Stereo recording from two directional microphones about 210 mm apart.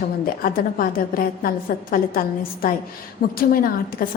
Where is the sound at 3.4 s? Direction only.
45° left (ahead or behind).